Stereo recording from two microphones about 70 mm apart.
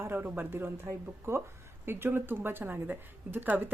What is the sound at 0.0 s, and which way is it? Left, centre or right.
Speech, right.